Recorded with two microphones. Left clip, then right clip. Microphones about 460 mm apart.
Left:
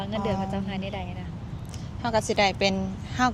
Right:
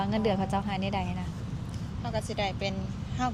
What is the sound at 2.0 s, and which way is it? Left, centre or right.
Speech, left.